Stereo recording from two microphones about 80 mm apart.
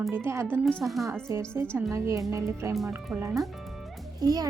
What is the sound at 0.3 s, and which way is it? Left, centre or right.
Speech, right.